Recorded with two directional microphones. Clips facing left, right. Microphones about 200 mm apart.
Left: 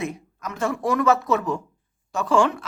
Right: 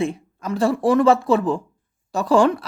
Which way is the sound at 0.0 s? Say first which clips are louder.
Right 6 dB; 30° right (ahead or behind).